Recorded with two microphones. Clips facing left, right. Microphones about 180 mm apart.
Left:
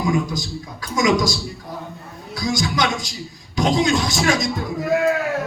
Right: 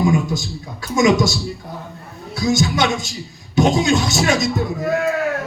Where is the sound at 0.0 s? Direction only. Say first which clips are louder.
Right 3 dB; 25° right (ahead or behind).